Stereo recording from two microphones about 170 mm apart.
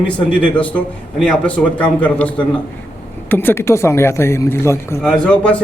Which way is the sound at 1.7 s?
10° left (ahead or behind).